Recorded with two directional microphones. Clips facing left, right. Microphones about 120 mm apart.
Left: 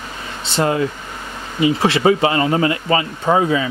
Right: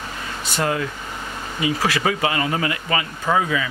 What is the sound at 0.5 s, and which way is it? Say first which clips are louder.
Speech: left 5 dB; 25° left (ahead or behind).